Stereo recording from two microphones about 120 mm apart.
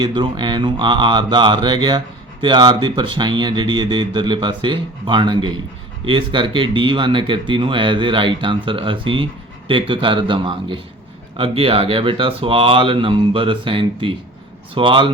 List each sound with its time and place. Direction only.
0.0 s speech: 40° right (ahead or behind)